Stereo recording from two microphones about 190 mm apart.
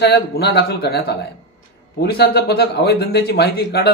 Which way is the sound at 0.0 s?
60° left (ahead or behind).